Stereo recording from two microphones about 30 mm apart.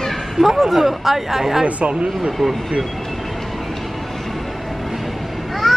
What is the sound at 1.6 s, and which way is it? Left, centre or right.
Speech, right.